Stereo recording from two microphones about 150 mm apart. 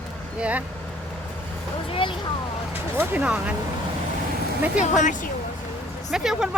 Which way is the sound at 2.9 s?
15° right (ahead or behind).